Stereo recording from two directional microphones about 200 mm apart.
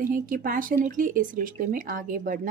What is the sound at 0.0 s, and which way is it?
Speech, 45° right (ahead or behind).